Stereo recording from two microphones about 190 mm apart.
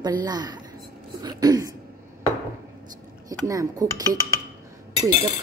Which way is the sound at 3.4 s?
15° right (ahead or behind).